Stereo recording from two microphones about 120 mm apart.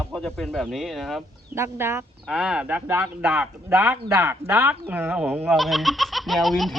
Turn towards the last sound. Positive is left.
turn(degrees=0)  # may be behind; listen again after turning